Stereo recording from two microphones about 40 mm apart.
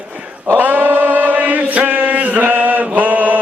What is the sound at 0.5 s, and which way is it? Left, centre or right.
Chant, right.